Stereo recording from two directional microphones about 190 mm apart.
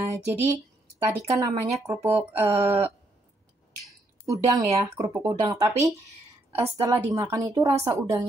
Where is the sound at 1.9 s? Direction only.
15° right (ahead or behind).